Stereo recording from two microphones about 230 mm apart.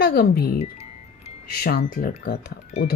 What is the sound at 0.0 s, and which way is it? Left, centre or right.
Speech, left.